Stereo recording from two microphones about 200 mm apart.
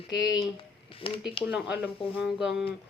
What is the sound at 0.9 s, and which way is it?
Speech, 25° left (ahead or behind).